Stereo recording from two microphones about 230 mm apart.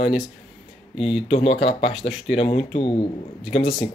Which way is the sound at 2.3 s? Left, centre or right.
Left.